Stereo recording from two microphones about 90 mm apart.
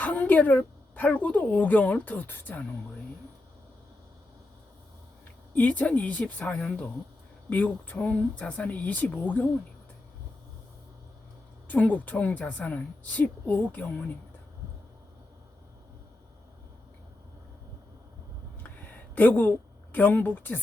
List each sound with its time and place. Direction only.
0.0 s speech: 20° left (ahead or behind)
5.5 s speech: 20° left (ahead or behind)
11.7 s speech: 15° left (ahead or behind)
18.6 s a sound: 20° left (ahead or behind)